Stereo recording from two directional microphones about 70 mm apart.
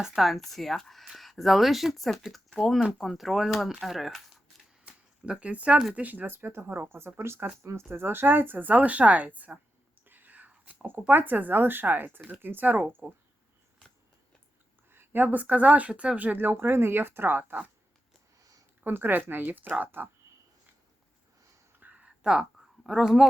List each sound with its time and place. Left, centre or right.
0.0 s speech: centre
4.9 s a sound: centre
5.9 s speech: right
6.8 s speech: right
7.6 s speech: right
14.8 s speech: right
18.9 s speech: right
21.8 s a sound: right
22.8 s speech: centre